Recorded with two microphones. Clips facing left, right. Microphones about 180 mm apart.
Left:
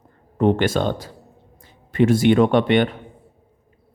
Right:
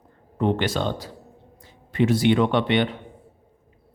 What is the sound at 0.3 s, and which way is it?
Speech, 50° left (ahead or behind).